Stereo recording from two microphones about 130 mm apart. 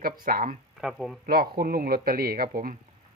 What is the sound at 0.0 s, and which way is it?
Speech, 90° right.